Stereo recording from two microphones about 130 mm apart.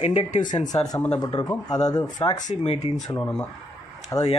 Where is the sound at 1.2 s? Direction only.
35° left (ahead or behind).